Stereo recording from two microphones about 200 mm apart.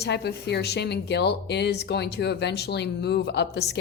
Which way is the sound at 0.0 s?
55° left (ahead or behind).